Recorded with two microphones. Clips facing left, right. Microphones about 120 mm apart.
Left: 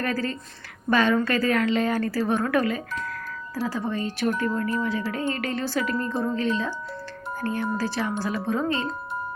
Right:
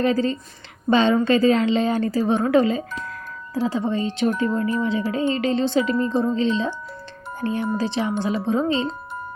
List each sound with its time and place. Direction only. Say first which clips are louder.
0.0 s a woman's voice: right 7 dB; 20° right (ahead or behind)